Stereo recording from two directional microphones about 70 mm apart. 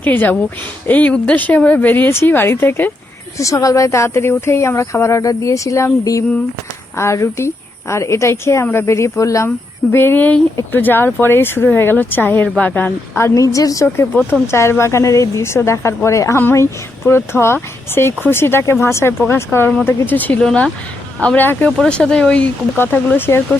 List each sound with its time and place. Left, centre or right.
0.0 s speech: left
3.3 s a woman's voice: left
9.9 s speech: left
13.3 s a woman's voice: left
13.8 s a woman's voice: left
20.4 s speech: centre
21.2 s speech: left
21.8 s speech: centre
22.8 s a woman's voice: left